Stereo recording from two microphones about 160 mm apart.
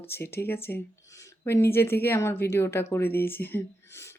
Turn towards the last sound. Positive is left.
turn(degrees=15)  # may be behind; listen again after turning